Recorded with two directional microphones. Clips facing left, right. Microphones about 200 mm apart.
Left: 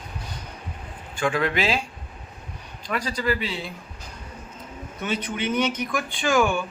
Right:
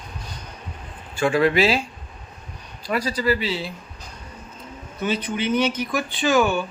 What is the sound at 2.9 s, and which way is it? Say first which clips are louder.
Speech: right 4 dB; 10° right (ahead or behind).